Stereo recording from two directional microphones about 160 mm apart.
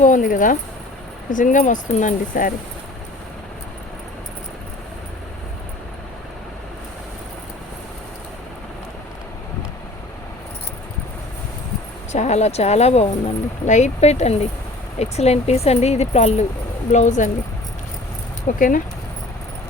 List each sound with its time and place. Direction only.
0.0 s speech: 55° left (ahead or behind)
12.1 s speech: 45° left (ahead or behind)
18.5 s speech: 55° left (ahead or behind)